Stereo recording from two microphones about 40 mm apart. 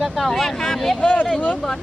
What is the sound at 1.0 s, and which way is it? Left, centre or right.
Speech, left.